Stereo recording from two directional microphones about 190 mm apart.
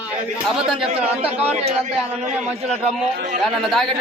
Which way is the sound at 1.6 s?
40° right (ahead or behind).